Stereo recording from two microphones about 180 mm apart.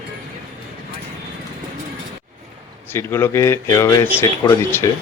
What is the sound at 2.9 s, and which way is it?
Speech, 15° left (ahead or behind).